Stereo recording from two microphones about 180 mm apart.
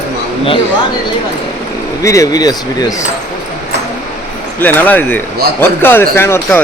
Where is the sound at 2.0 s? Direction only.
20° left (ahead or behind).